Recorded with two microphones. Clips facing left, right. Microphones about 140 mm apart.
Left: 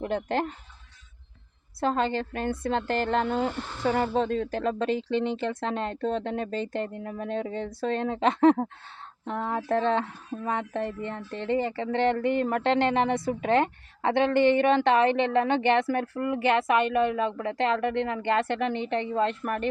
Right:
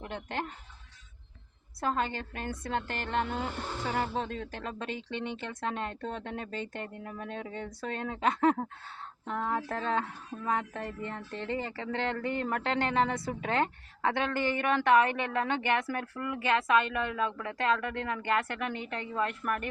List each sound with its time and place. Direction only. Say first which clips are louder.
0.1 s speech: left 8 dB; 35° left (ahead or behind)
1.8 s speech: left 6 dB; 30° left (ahead or behind); by 4.1 s 45° left (ahead or behind)
4.1 s speech: left 9 dB; 35° left (ahead or behind)